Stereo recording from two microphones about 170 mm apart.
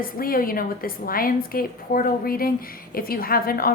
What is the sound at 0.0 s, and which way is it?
A woman's voice, 60° left (ahead or behind).